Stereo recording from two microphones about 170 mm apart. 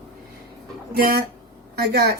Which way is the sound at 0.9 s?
60° right (ahead or behind).